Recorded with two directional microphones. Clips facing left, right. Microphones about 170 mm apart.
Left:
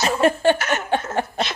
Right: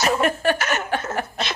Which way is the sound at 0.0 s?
30° left (ahead or behind).